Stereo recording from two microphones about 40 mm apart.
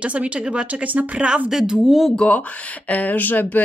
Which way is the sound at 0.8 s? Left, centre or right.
Right.